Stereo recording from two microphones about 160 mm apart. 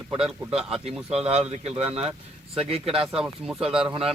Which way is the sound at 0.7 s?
40° right (ahead or behind).